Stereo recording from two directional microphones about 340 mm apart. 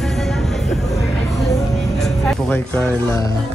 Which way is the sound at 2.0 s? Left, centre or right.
Centre.